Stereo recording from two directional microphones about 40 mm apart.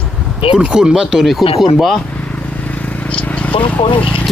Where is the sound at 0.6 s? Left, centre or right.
Centre.